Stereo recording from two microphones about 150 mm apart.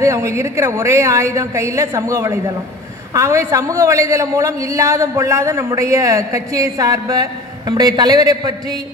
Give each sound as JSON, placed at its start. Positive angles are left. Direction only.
{"t": 0.0, "sound": "a man's voice", "side_deg": -20}